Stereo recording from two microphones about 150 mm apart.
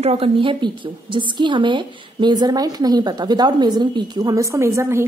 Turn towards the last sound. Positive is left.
turn(degrees=-15)  # may be behind; listen again after turning